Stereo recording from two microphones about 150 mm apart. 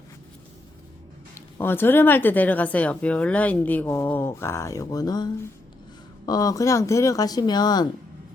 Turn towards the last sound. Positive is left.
turn(degrees=25)  # may be behind; listen again after turning